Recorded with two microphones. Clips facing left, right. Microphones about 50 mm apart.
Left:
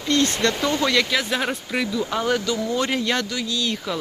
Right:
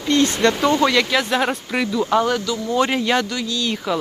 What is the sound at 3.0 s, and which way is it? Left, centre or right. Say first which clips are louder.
Speech: right 4 dB; centre.